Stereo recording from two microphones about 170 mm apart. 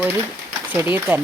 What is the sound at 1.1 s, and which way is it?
Speech, 10° right (ahead or behind).